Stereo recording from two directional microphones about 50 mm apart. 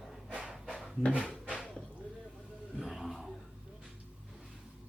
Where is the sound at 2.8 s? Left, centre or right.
Centre.